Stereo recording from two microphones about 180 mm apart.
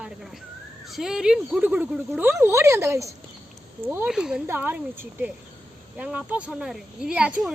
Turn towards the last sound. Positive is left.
turn(degrees=-5)  # may be behind; listen again after turning